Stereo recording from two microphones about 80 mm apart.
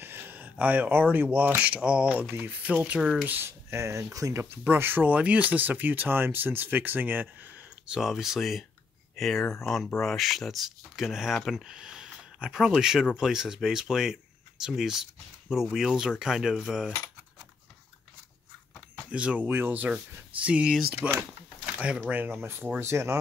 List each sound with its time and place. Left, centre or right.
0.0 s a sound: right
1.1 s speech: right
3.3 s speech: right
4.4 s speech: right
8.0 s speech: centre
19.0 s speech: centre; by 23.1 s right